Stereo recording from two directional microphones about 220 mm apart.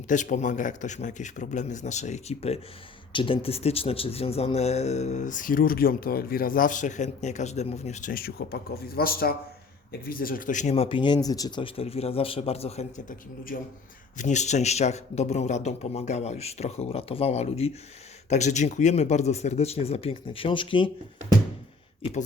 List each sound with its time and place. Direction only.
0.1 s a man's voice: 35° left (ahead or behind)